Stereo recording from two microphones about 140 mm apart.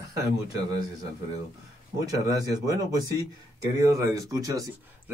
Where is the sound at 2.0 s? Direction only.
25° right (ahead or behind).